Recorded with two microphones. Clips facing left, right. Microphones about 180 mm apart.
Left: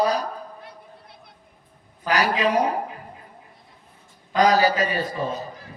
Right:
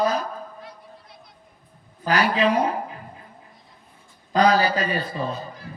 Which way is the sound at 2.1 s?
40° left (ahead or behind).